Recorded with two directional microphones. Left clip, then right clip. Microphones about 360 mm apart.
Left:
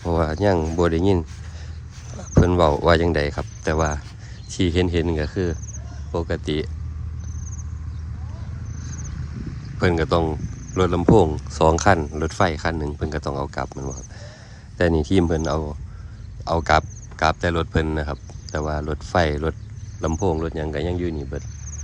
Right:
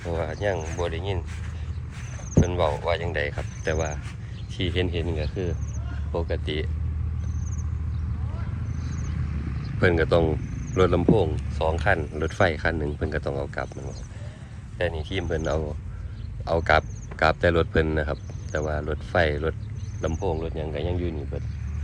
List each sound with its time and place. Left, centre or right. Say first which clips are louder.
0.0 s speech: left 7 dB; centre
0.3 s speech: left 7 dB; left
2.6 s speech: left 9 dB; left
3.0 s speech: left 7 dB; left
3.2 s speech: left 4 dB; centre
8.9 s vehicle: left 3 dB; right
9.8 s speech: left 1 dB; centre
15.3 s speech: left 3 dB; centre